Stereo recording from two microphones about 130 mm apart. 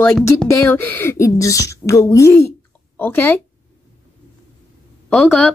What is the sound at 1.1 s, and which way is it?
A woman's voice, 25° left (ahead or behind).